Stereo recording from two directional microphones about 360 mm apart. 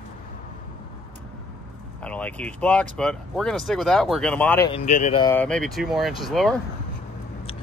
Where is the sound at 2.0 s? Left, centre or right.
Centre.